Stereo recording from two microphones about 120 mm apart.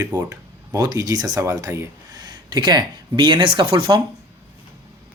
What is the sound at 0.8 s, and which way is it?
Speech, 30° right (ahead or behind).